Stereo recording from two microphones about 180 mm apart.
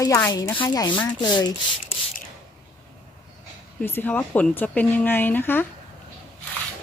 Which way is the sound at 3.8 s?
10° left (ahead or behind).